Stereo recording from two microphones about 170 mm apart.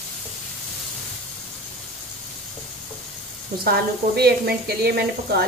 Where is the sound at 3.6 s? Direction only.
65° right (ahead or behind).